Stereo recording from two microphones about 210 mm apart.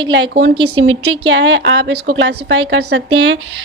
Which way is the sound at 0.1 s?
55° right (ahead or behind).